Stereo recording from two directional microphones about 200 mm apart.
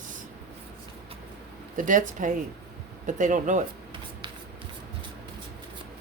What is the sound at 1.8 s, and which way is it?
A woman's voice, 40° right (ahead or behind).